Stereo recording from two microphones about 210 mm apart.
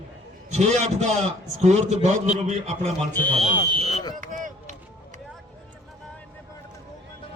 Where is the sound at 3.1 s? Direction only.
10° left (ahead or behind).